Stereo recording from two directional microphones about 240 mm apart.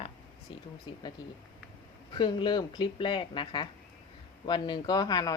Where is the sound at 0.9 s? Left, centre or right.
Centre.